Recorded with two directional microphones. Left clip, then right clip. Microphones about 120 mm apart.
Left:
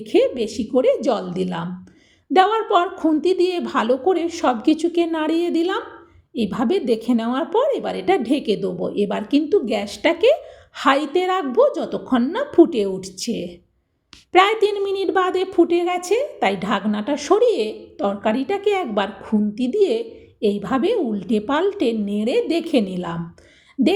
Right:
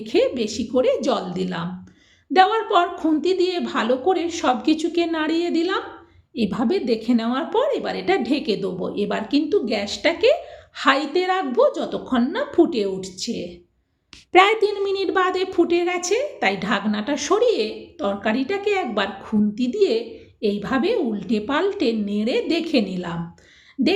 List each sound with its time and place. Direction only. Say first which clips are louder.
0.0 s a woman's voice: left 2 dB; 45° left (ahead or behind)
1.4 s a woman's voice: left 2 dB; 50° left (ahead or behind)
6.4 s a woman's voice: left 1 dB; centre (ahead or behind)
6.7 s a woman's voice: left 2 dB; 40° left (ahead or behind); by 13.5 s 65° left (ahead or behind)
14.3 s a woman's voice: even; centre (ahead or behind)
14.7 s a woman's voice: left 1 dB; 30° left (ahead or behind)